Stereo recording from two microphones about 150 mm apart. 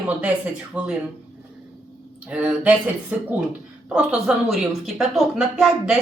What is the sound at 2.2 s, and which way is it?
Speech, 10° right (ahead or behind).